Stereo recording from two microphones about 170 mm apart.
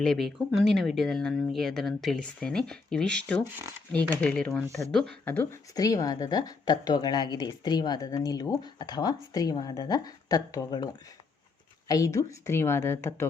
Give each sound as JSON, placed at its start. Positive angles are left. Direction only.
{"t": 0.0, "sound": "speech", "side_deg": 0}
{"t": 3.4, "sound": "speech", "side_deg": -10}
{"t": 3.9, "sound": "a woman's voice", "side_deg": 5}
{"t": 11.9, "sound": "a woman's voice", "side_deg": 20}